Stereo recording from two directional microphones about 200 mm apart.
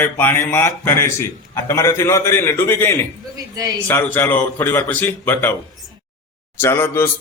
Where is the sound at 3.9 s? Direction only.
10° left (ahead or behind).